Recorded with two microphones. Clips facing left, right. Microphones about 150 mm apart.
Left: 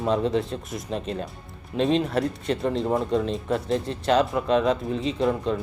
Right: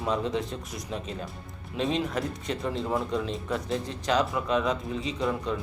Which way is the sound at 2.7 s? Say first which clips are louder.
Left 5 dB; 25° left (ahead or behind).